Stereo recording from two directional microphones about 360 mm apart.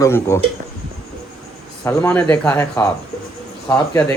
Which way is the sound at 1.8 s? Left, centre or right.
Centre.